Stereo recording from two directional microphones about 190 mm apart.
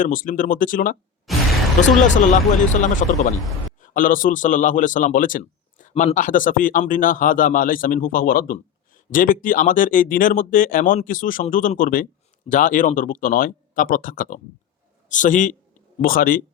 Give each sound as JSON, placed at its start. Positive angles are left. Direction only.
{"t": 0.0, "sound": "speech", "side_deg": 45}
{"t": 1.3, "sound": "music", "side_deg": 0}
{"t": 2.1, "sound": "a man's voice", "side_deg": 40}
{"t": 5.9, "sound": "speech", "side_deg": 30}
{"t": 6.1, "sound": "a man's voice", "side_deg": 45}